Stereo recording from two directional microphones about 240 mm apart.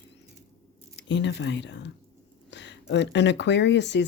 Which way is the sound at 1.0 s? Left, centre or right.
Left.